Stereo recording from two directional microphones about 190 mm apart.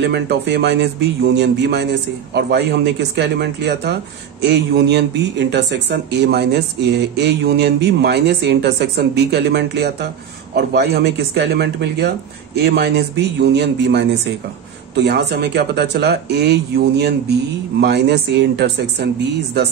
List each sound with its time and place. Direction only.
0.0 s speech: 60° right (ahead or behind)